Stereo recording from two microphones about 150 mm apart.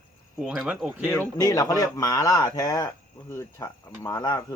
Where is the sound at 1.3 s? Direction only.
25° left (ahead or behind).